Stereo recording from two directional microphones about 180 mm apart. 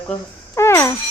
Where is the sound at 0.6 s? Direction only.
15° left (ahead or behind).